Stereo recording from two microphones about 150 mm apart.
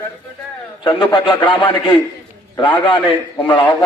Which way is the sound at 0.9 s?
30° left (ahead or behind).